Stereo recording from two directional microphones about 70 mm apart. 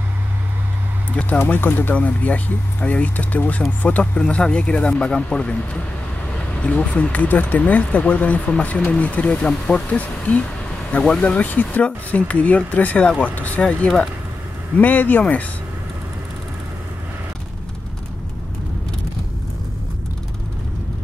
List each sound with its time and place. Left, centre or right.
1.5 s speech: left